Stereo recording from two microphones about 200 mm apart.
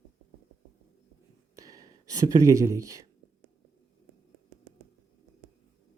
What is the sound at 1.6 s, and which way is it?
Speech, 15° right (ahead or behind).